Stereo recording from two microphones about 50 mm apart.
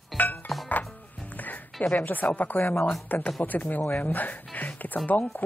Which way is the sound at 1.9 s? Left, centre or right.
Left.